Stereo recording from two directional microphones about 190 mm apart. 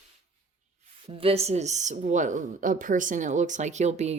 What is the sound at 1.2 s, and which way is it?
A woman's voice, 30° right (ahead or behind).